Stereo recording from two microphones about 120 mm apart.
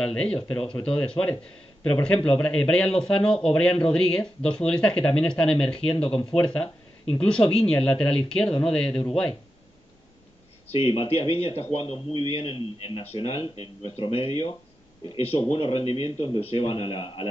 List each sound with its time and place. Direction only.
0.0 s speech: 10° left (ahead or behind)
10.7 s a man's voice: 50° left (ahead or behind)